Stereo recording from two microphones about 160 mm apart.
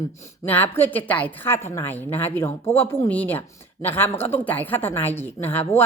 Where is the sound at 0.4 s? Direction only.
10° left (ahead or behind).